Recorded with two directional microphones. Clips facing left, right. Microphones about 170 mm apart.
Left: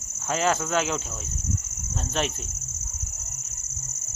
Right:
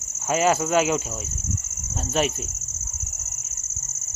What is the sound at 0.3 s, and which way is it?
Cricket, 10° right (ahead or behind).